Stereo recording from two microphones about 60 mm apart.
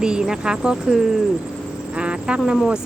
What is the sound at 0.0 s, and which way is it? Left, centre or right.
Speech, centre.